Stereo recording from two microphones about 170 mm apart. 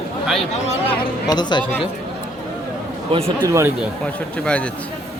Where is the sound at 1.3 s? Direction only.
25° left (ahead or behind).